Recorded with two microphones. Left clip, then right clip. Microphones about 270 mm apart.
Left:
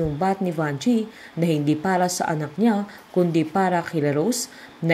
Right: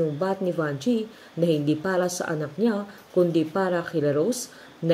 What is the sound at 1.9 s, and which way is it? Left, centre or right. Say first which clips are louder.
A woman's voice: left 5 dB; left.